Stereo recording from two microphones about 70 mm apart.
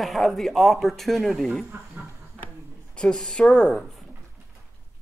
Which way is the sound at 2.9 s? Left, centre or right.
Centre.